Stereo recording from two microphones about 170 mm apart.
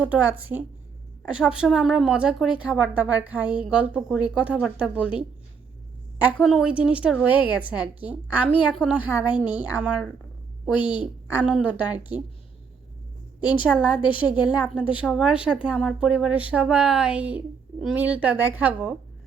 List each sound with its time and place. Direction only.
0.0 s a woman's voice: 10° right (ahead or behind)
10.8 s a woman's voice: 25° left (ahead or behind)
11.0 s a woman's voice: 10° right (ahead or behind)
13.6 s a woman's voice: 5° right (ahead or behind)